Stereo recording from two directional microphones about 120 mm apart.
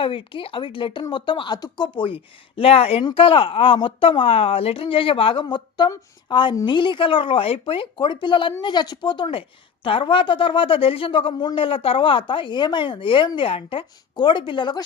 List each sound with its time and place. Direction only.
0.0 s speech: 50° left (ahead or behind)
3.0 s speech: 45° left (ahead or behind)